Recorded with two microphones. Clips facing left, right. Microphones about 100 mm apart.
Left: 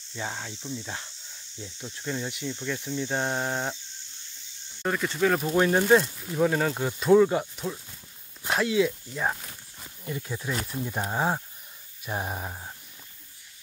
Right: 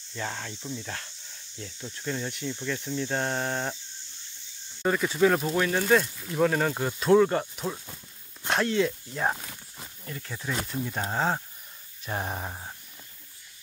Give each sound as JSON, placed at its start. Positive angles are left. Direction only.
{"t": 0.1, "sound": "speech", "side_deg": 10}
{"t": 0.6, "sound": "speech", "side_deg": 0}
{"t": 1.6, "sound": "speech", "side_deg": 15}
{"t": 4.8, "sound": "speech", "side_deg": 0}
{"t": 5.6, "sound": "speech", "side_deg": 25}
{"t": 6.4, "sound": "speech", "side_deg": 0}
{"t": 10.0, "sound": "speech", "side_deg": 15}